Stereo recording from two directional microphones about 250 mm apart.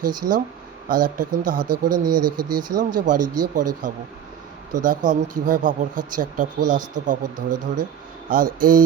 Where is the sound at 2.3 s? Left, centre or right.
Right.